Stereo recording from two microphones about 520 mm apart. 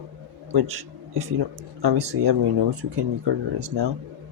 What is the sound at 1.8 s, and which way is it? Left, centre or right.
Speech, right.